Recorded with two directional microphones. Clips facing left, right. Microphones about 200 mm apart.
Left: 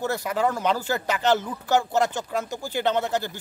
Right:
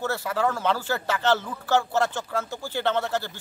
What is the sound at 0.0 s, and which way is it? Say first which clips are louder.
A man's voice: left 1 dB; 15° left (ahead or behind).